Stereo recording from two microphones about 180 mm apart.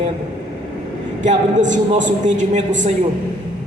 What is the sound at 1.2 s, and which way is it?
A man's voice, 45° right (ahead or behind).